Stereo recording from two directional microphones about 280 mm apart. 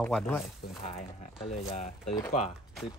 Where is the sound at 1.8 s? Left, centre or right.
Left.